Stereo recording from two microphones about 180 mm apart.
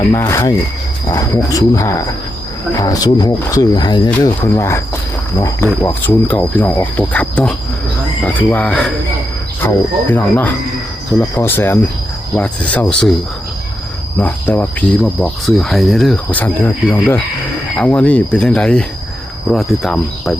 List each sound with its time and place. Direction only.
0.1 s speech: 15° left (ahead or behind)
14.2 s speech: 10° left (ahead or behind)